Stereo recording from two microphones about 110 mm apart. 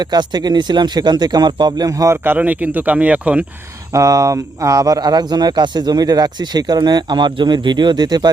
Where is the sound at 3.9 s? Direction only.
30° right (ahead or behind).